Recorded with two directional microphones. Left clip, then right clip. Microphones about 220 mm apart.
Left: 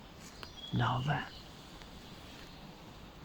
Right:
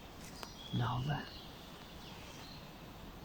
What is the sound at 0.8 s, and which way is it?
Speech, 25° left (ahead or behind).